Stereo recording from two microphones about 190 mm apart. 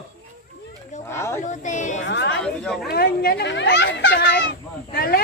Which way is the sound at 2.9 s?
55° left (ahead or behind).